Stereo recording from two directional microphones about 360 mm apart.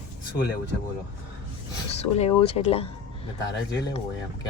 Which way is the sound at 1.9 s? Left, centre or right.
Centre.